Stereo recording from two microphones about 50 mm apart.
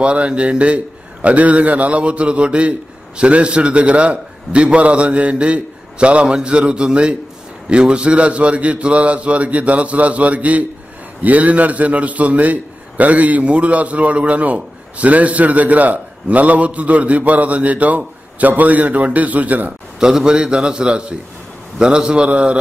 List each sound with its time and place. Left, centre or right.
0.0 s a man's voice: right
20.0 s a man's voice: centre